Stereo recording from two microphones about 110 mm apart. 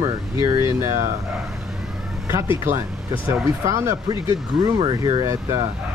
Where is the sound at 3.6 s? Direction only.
25° right (ahead or behind).